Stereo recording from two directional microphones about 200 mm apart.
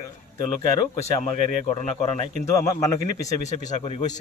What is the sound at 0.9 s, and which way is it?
Speech, 35° left (ahead or behind).